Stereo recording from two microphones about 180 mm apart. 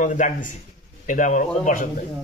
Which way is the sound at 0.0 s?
45° left (ahead or behind).